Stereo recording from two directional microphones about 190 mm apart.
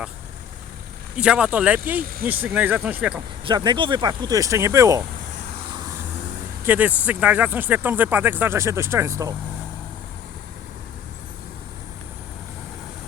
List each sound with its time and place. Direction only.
1.1 s speech: 5° right (ahead or behind)
3.4 s speech: 25° right (ahead or behind)
6.7 s speech: 10° right (ahead or behind)